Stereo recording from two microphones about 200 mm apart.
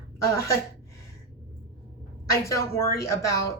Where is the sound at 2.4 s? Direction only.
15° left (ahead or behind).